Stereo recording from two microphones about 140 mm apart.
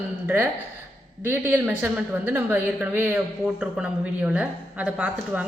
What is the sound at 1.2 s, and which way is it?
A woman's voice, 15° right (ahead or behind).